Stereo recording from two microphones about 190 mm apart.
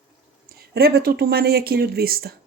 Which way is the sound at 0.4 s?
55° right (ahead or behind).